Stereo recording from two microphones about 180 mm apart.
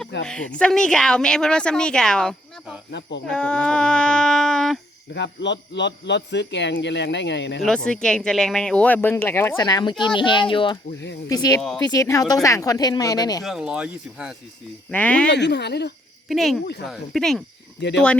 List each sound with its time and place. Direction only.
0.3 s a woman's voice: 5° left (ahead or behind)
5.1 s speech: 75° left (ahead or behind)
7.6 s speech: 5° left (ahead or behind); by 13.4 s 20° left (ahead or behind)
13.4 s a woman's voice: centre (ahead or behind)
14.8 s speech: 5° left (ahead or behind)
15.3 s speech: 70° left (ahead or behind)
16.3 s a woman's voice: centre (ahead or behind)
17.7 s speech: 70° left (ahead or behind)